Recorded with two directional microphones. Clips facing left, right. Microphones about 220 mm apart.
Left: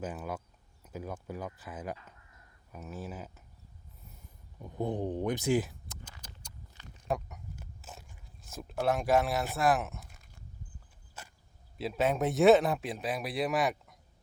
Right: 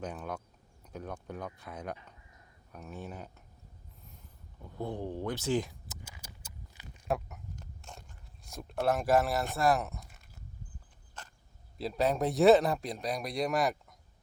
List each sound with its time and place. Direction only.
0.0 s speech: 5° left (ahead or behind)
4.6 s speech: 15° left (ahead or behind)
5.9 s a sound: 10° right (ahead or behind)
8.4 s speech: centre (ahead or behind)
11.2 s a sound: 5° left (ahead or behind)
11.8 s speech: centre (ahead or behind)